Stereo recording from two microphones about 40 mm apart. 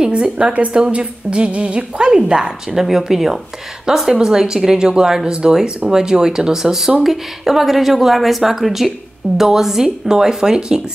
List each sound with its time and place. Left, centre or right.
0.1 s a woman's voice: right; by 10.8 s centre